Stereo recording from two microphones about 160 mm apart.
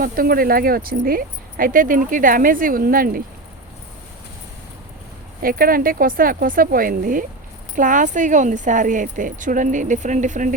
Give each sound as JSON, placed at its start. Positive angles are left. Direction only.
{"t": 0.0, "sound": "speech", "side_deg": -65}
{"t": 5.4, "sound": "speech", "side_deg": -65}